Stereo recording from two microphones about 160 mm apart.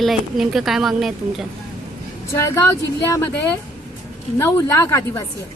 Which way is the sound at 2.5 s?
15° left (ahead or behind).